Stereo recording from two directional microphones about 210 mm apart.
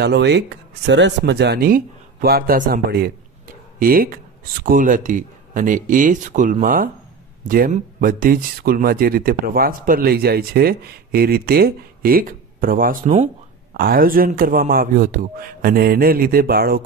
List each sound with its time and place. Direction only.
0.0 s a man's voice: 55° right (ahead or behind)